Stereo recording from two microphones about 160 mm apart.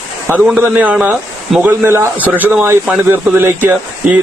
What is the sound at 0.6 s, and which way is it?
Speech, 10° right (ahead or behind).